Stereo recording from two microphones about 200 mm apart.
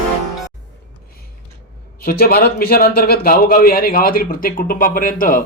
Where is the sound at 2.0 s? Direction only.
50° left (ahead or behind).